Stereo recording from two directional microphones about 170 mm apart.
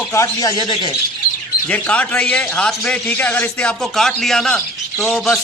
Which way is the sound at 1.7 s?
10° left (ahead or behind).